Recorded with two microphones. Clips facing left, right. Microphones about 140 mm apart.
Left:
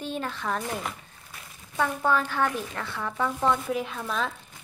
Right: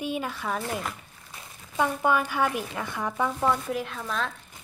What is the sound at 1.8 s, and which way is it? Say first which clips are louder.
Speech: right 1 dB; 15° right (ahead or behind).